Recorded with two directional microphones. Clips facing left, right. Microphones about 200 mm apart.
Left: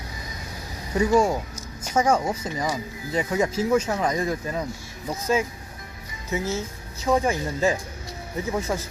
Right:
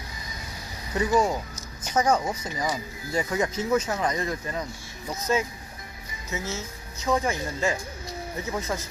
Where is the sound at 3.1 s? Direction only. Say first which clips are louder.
Left 3 dB; 20° left (ahead or behind).